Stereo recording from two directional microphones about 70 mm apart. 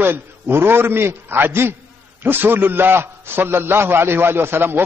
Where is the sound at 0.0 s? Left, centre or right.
Right.